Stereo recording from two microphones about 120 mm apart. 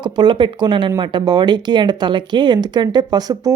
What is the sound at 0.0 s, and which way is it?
Speech, 40° right (ahead or behind).